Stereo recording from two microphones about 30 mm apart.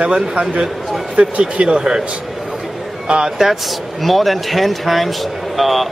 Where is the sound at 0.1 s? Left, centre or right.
Right.